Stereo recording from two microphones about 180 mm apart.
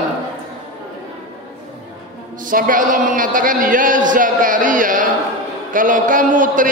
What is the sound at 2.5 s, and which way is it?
Speech, 50° right (ahead or behind).